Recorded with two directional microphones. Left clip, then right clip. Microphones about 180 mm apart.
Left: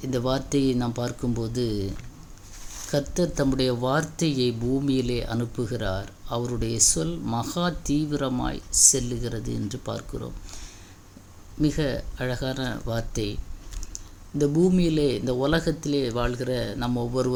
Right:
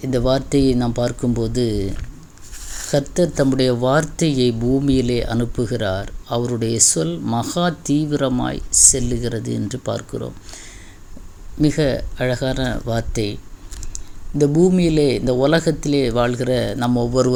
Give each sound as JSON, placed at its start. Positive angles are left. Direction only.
{"t": 0.0, "sound": "speech", "side_deg": -20}
{"t": 11.6, "sound": "speech", "side_deg": -25}